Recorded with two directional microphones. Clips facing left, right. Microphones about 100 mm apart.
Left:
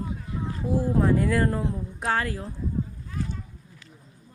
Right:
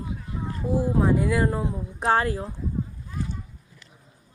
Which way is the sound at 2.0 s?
25° right (ahead or behind).